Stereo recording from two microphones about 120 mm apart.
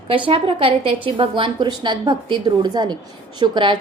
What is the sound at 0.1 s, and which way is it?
A woman's voice, 50° right (ahead or behind).